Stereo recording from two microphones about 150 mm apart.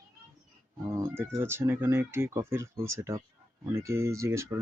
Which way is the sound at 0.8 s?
15° right (ahead or behind).